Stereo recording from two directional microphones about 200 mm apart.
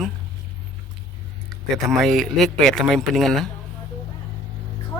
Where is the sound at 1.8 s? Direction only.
Centre (ahead or behind).